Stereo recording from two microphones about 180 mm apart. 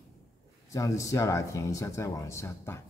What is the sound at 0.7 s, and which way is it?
Speech, 20° left (ahead or behind).